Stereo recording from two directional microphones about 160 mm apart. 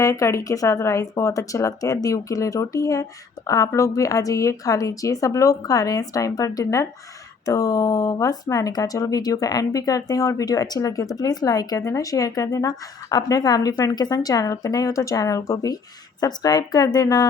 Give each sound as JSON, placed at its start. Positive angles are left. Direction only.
{"t": 0.0, "sound": "speech", "side_deg": 20}